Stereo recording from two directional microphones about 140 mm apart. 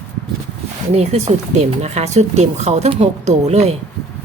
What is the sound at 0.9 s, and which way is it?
Speech, 50° right (ahead or behind).